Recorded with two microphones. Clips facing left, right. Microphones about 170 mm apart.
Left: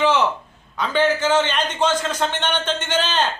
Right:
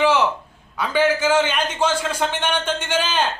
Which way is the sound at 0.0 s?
10° right (ahead or behind).